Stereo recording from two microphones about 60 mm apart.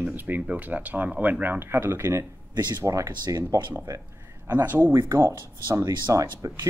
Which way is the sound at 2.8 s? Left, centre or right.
Right.